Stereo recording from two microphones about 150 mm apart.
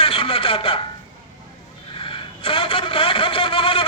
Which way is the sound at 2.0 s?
35° left (ahead or behind).